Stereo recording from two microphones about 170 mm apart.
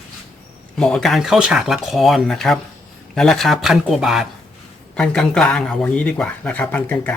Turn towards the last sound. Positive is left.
turn(degrees=10)  # may be behind; listen again after turning